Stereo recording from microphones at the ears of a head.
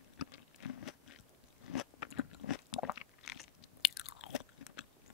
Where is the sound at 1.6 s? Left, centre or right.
Left.